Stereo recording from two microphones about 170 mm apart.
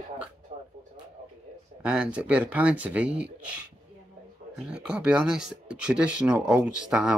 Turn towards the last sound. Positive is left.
turn(degrees=-5)  # may be behind; listen again after turning